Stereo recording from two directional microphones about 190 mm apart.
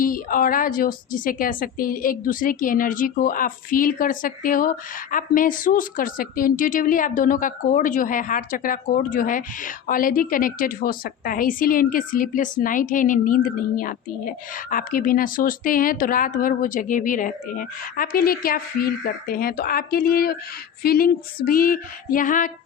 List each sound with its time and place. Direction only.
0.0 s a woman's voice: 45° left (ahead or behind)